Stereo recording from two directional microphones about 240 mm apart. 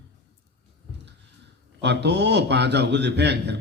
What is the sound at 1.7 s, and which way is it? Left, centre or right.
A man's voice, right.